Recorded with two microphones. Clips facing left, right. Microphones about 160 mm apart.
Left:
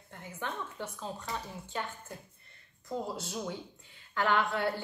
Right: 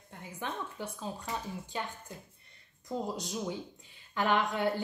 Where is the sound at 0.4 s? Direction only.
15° right (ahead or behind).